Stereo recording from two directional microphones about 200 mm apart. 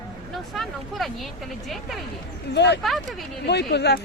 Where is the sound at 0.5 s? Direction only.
Centre (ahead or behind).